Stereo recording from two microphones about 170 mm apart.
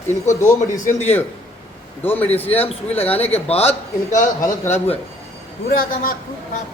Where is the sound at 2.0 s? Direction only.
10° left (ahead or behind).